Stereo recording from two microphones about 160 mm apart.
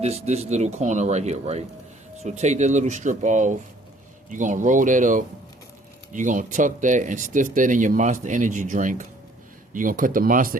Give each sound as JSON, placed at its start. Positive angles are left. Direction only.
{"t": 0.0, "sound": "speech", "side_deg": -45}